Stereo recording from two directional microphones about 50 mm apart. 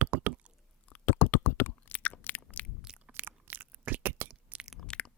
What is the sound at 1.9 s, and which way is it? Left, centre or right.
Biting, left.